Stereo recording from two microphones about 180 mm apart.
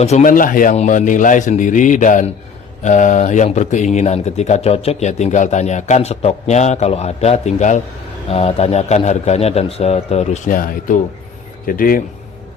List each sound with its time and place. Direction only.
0.0 s a man's voice: 40° left (ahead or behind)